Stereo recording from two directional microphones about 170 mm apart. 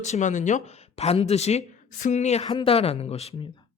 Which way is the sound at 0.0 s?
45° left (ahead or behind).